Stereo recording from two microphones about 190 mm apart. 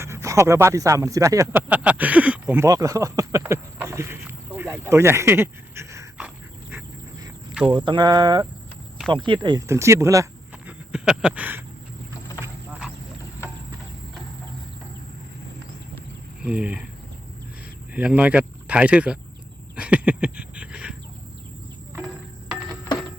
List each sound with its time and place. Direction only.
0.0 s speech: 15° right (ahead or behind)
6.1 s dog: 10° right (ahead or behind)
7.7 s speech: 25° right (ahead or behind)
10.7 s a sound: 5° right (ahead or behind)
16.4 s speech: 5° right (ahead or behind)
17.9 s speech: 5° right (ahead or behind)
19.7 s a sound: 5° right (ahead or behind)